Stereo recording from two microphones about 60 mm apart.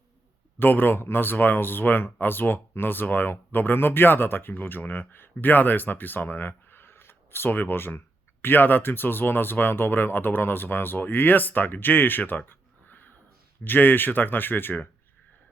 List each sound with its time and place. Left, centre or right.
0.6 s speech: left
12.5 s a sound: left
13.7 s speech: left